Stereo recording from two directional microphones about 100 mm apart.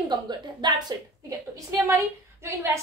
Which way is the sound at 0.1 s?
50° right (ahead or behind).